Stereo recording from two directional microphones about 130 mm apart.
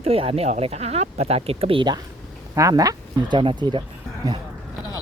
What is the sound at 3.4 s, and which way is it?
Speech, 40° right (ahead or behind).